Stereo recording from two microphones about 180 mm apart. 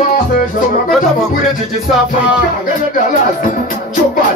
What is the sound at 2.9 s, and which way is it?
Speech, 45° left (ahead or behind).